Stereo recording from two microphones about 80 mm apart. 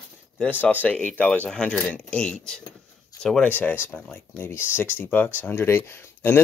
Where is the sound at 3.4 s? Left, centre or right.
Left.